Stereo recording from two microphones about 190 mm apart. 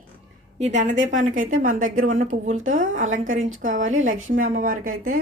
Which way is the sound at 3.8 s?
90° right.